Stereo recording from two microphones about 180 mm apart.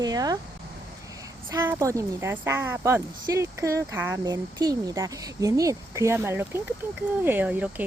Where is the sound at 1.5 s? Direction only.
15° right (ahead or behind).